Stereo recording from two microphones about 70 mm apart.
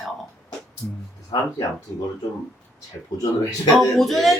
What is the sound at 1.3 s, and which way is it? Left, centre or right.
Speech, left.